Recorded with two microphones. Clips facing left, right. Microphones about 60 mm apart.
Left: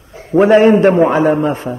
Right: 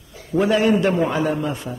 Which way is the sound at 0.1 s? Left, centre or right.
Left.